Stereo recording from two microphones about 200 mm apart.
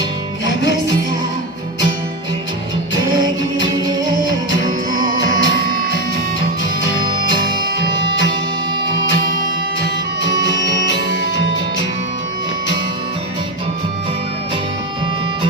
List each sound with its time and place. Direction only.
0.4 s music: 65° left (ahead or behind)
2.9 s music: 65° left (ahead or behind)
3.8 s music: 20° right (ahead or behind)
4.3 s music: 70° left (ahead or behind)
9.8 s music: 65° left (ahead or behind)